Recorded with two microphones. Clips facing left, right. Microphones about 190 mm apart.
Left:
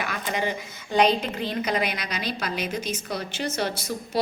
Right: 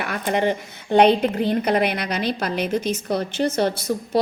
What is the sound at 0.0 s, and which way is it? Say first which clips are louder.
A woman's voice: right 6 dB; 55° right (ahead or behind).